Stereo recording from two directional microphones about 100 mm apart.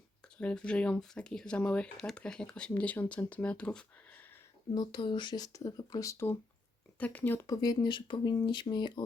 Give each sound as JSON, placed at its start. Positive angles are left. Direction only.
{"t": 0.3, "sound": "speech", "side_deg": 10}
{"t": 4.7, "sound": "speech", "side_deg": 45}
{"t": 7.0, "sound": "speech", "side_deg": 15}
{"t": 7.4, "sound": "speech", "side_deg": 40}